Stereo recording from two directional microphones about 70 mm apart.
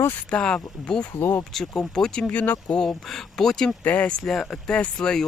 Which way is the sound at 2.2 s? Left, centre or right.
Left.